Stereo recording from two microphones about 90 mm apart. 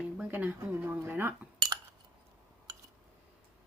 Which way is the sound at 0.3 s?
20° right (ahead or behind).